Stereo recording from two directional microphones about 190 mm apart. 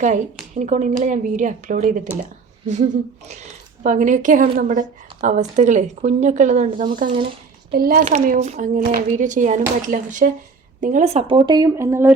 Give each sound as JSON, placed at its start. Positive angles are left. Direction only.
{"t": 0.5, "sound": "a woman's voice", "side_deg": -40}
{"t": 8.0, "sound": "a woman's voice", "side_deg": -40}
{"t": 11.3, "sound": "speech", "side_deg": -20}